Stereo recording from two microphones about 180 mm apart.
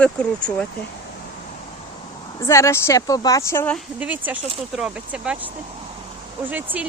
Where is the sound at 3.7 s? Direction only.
5° right (ahead or behind).